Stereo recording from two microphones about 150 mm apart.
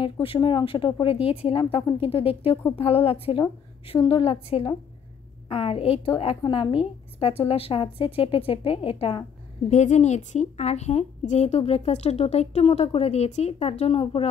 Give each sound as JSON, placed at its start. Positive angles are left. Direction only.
{"t": 0.0, "sound": "a woman's voice", "side_deg": 35}
{"t": 9.7, "sound": "a woman's voice", "side_deg": 50}